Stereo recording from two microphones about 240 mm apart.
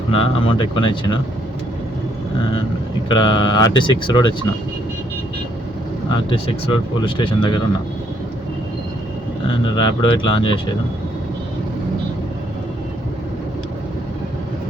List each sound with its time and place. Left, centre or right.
0.1 s speech: left
3.1 s speech: centre
6.7 s speech: centre
9.7 s speech: centre